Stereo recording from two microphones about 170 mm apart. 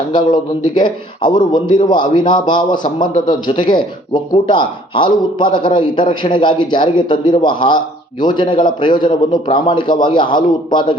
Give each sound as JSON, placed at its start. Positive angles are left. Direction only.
{"t": 0.1, "sound": "a man's voice", "side_deg": 25}